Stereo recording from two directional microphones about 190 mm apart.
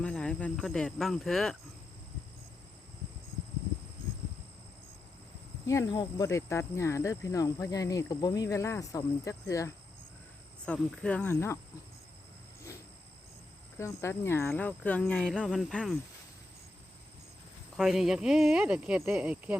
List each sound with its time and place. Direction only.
0.0 s speech: 5° left (ahead or behind)
5.6 s speech: 15° left (ahead or behind)
10.7 s speech: 5° left (ahead or behind)
13.7 s speech: 15° left (ahead or behind)
17.7 s speech: centre (ahead or behind)